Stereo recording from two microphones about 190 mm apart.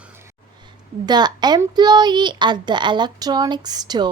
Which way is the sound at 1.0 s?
20° right (ahead or behind).